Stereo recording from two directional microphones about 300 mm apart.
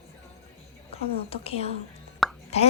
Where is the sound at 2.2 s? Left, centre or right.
Centre.